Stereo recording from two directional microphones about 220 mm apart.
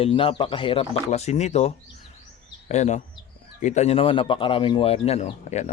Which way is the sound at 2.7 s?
30° left (ahead or behind).